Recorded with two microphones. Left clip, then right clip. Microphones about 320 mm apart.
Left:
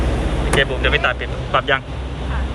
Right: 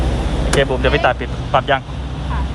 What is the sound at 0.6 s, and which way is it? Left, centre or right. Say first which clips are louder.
Speech: right 2 dB; centre.